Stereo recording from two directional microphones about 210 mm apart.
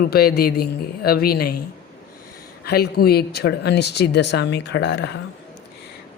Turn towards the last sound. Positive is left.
turn(degrees=55)  # may be behind; listen again after turning